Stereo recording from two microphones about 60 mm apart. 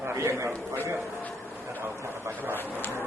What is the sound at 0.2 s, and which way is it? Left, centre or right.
Speech, right.